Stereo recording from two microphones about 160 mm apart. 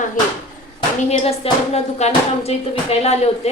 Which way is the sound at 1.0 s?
40° left (ahead or behind).